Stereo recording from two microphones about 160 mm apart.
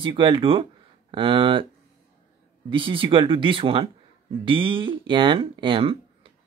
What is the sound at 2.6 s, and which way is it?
Speech, 30° right (ahead or behind).